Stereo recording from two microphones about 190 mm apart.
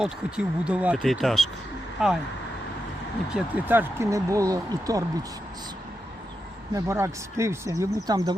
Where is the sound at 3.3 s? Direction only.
10° right (ahead or behind).